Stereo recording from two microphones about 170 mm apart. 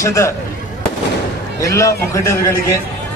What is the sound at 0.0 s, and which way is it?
Speech, 15° left (ahead or behind).